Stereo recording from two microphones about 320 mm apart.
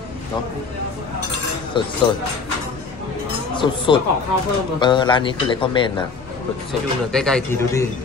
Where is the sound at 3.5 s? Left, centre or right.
Centre.